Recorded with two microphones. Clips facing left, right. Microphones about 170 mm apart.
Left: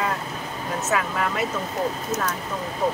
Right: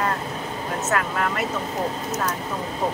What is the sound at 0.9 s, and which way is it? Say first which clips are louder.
Speech: even; 5° left (ahead or behind).